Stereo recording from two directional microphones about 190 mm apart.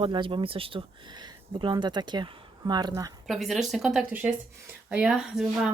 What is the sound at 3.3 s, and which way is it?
Speech, centre (ahead or behind).